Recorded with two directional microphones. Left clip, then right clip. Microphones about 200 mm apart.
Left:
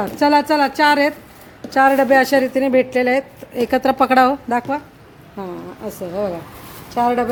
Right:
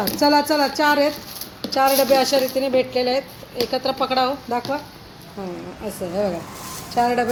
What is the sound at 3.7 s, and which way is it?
Speech, 60° left (ahead or behind).